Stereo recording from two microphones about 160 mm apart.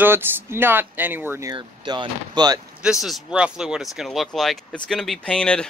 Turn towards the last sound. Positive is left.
turn(degrees=5)  # may be behind; listen again after turning